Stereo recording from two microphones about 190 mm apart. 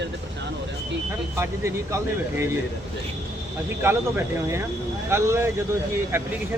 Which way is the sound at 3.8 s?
10° right (ahead or behind).